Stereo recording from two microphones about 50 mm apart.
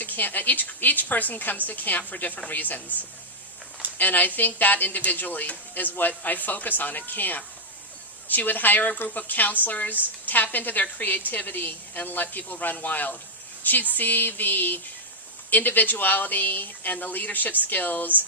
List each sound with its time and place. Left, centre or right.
0.0 s speech: left
3.9 s speech: left